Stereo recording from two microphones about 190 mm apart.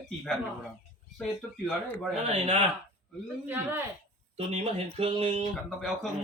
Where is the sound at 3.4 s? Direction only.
10° right (ahead or behind).